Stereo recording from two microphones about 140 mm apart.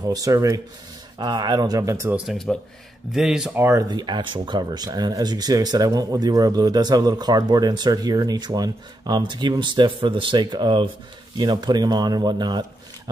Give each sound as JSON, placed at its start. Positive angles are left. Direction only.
{"t": 0.0, "sound": "speech", "side_deg": -25}
{"t": 2.1, "sound": "speech", "side_deg": 0}
{"t": 3.5, "sound": "speech", "side_deg": -20}
{"t": 3.9, "sound": "speech", "side_deg": -30}